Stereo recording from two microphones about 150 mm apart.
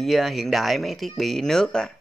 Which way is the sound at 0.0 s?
Centre (ahead or behind).